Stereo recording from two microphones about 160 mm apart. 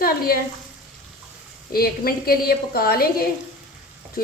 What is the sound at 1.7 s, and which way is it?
A woman's voice, 70° left (ahead or behind).